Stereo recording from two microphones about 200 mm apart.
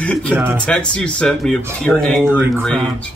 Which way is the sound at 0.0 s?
5° left (ahead or behind).